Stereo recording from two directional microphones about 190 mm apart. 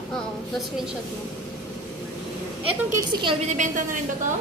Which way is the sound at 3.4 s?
40° right (ahead or behind).